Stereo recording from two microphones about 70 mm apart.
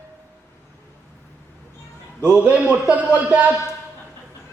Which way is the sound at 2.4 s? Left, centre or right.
Right.